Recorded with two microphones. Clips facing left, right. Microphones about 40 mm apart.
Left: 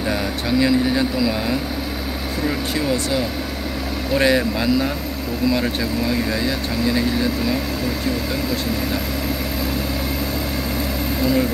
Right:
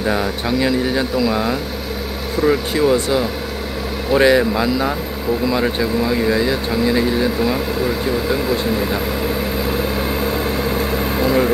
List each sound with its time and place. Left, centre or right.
0.1 s speech: centre
11.1 s vehicle: right